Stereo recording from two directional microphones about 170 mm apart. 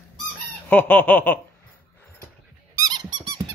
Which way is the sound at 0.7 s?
10° left (ahead or behind).